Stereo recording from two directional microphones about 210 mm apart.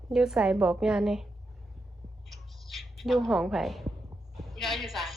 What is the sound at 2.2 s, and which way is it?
Squawk, centre (ahead or behind).